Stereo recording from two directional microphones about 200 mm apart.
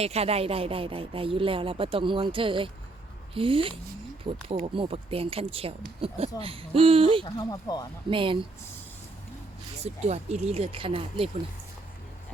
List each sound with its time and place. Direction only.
0.0 s speech: 30° right (ahead or behind)
7.3 s speech: 20° left (ahead or behind)
8.1 s speech: 25° right (ahead or behind)
9.8 s speech: 35° right (ahead or behind)